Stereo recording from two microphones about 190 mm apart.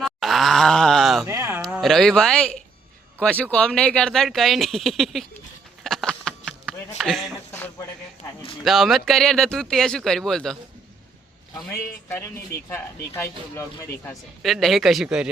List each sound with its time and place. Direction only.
0.0 s groan: centre (ahead or behind)
1.3 s a sound: 15° right (ahead or behind)
1.6 s speech: centre (ahead or behind)
5.8 s a sound: centre (ahead or behind)
7.0 s speech: centre (ahead or behind)
8.6 s speech: centre (ahead or behind)
11.5 s speech: 10° left (ahead or behind)
12.5 s speech: 60° left (ahead or behind)
13.1 s speech: 15° left (ahead or behind)
14.4 s speech: centre (ahead or behind)